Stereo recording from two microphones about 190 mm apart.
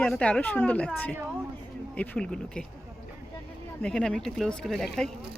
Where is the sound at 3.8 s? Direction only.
5° left (ahead or behind).